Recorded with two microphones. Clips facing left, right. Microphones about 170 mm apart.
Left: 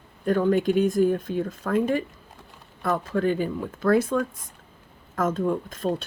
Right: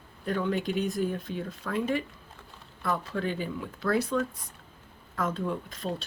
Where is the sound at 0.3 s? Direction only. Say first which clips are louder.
Left 8 dB; 45° left (ahead or behind).